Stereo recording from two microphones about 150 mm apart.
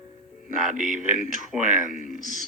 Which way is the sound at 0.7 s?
55° right (ahead or behind).